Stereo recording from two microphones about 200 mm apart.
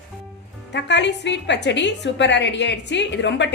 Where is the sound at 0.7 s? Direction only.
60° left (ahead or behind).